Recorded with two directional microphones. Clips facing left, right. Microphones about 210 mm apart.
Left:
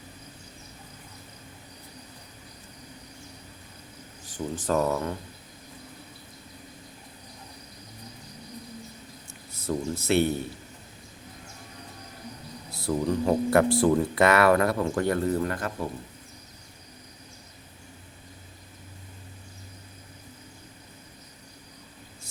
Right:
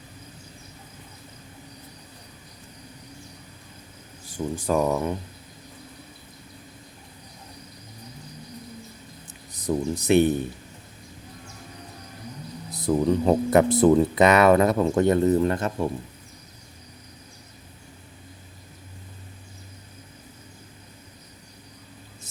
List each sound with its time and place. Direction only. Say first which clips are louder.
4.3 s speech: right 3 dB; 10° right (ahead or behind)
9.5 s speech: right 4 dB; 15° right (ahead or behind)
12.7 s speech: right 5 dB; 20° right (ahead or behind)